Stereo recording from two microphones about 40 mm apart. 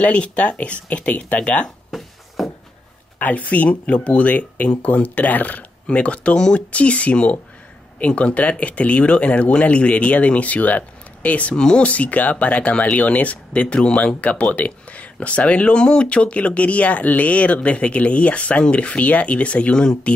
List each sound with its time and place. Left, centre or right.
0.0 s speech: left
1.9 s a sound: centre
3.2 s speech: left
5.9 s speech: left
11.5 s speech: left
11.8 s speech: left